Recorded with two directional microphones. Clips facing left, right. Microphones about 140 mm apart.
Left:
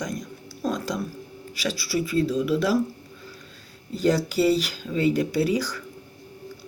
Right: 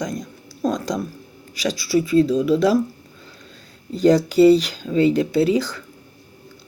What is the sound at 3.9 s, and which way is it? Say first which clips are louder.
Speech: right 7 dB; 5° left (ahead or behind).